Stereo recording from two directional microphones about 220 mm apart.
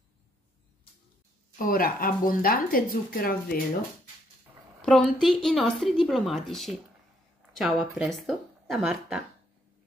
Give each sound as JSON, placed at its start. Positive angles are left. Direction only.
{"t": 1.6, "sound": "speech", "side_deg": 40}
{"t": 4.8, "sound": "speech", "side_deg": 5}